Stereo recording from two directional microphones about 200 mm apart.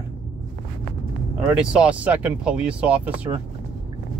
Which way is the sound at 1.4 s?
5° right (ahead or behind).